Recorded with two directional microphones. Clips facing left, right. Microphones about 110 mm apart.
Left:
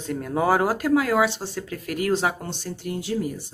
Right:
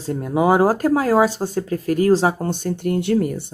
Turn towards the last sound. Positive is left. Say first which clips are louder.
# right 8 dB
turn(degrees=-60)  # may be behind; listen again after turning